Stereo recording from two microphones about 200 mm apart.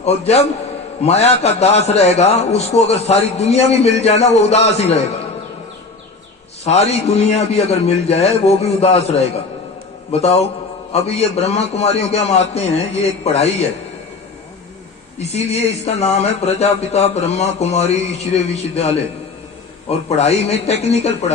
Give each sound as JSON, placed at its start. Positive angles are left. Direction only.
{"t": 0.0, "sound": "a man's voice", "side_deg": 30}
{"t": 6.7, "sound": "a man's voice", "side_deg": 35}
{"t": 15.2, "sound": "a man's voice", "side_deg": 30}
{"t": 20.1, "sound": "a man's voice", "side_deg": 30}